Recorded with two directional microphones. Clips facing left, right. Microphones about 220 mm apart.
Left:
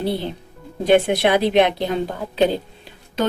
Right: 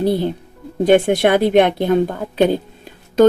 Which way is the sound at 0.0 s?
45° right (ahead or behind).